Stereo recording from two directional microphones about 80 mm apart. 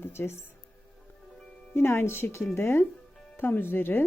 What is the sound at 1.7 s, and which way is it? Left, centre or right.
Speech, left.